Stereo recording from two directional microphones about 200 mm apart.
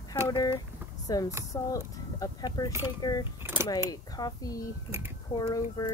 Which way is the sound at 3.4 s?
10° right (ahead or behind).